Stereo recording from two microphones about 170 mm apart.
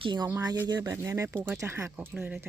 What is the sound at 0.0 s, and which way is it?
Speech, 25° right (ahead or behind).